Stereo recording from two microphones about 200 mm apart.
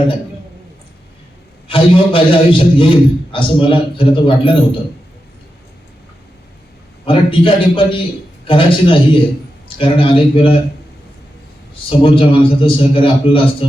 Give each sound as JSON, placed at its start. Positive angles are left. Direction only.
{"t": 1.6, "sound": "a man's voice", "side_deg": 25}
{"t": 7.0, "sound": "a man's voice", "side_deg": 25}
{"t": 11.9, "sound": "a man's voice", "side_deg": 25}